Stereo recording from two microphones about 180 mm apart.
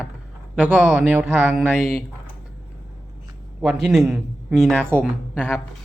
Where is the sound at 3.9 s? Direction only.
5° right (ahead or behind).